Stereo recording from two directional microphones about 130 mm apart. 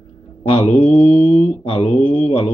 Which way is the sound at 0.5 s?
50° left (ahead or behind).